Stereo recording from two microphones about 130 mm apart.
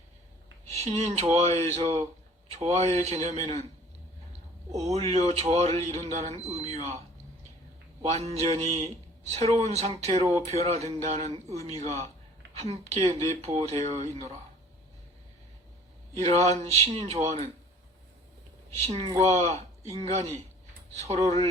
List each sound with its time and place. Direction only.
0.7 s speech: 55° right (ahead or behind)
4.9 s speech: 55° right (ahead or behind)
8.0 s speech: 60° right (ahead or behind)
16.2 s speech: 55° right (ahead or behind)
18.9 s speech: 55° right (ahead or behind)